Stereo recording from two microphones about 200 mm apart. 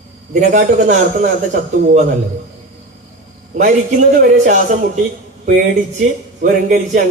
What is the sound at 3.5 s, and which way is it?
A man's voice, 40° right (ahead or behind).